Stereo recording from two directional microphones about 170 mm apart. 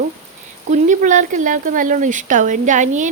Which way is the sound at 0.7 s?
45° right (ahead or behind).